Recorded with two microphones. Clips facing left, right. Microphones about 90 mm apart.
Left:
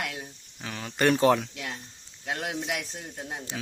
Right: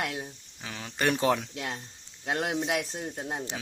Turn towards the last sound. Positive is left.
turn(degrees=-25)  # may be behind; listen again after turning